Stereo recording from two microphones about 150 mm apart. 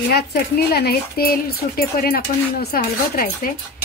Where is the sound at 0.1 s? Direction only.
90° left.